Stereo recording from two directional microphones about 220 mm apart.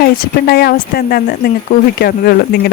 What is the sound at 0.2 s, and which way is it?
Speech, 45° left (ahead or behind).